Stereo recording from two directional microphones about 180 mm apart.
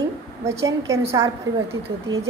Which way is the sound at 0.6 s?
15° right (ahead or behind).